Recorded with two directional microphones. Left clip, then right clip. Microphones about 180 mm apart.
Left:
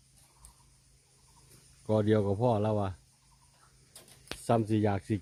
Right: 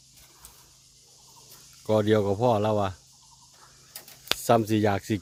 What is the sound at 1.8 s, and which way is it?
Speech, 15° right (ahead or behind).